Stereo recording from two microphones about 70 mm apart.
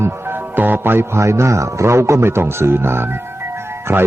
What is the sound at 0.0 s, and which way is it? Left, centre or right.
Speech, right.